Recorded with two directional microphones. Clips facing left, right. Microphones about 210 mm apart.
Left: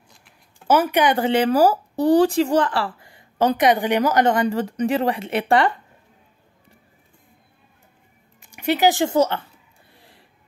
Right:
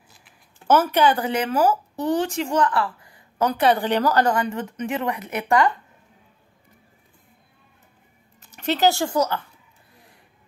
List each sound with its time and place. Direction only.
0.7 s speech: 10° left (ahead or behind)
1.1 s speech: 25° left (ahead or behind)
3.6 s a woman's voice: 15° left (ahead or behind); by 5.8 s 30° left (ahead or behind)
8.4 s speech: 10° left (ahead or behind)
9.9 s a sound: 30° left (ahead or behind)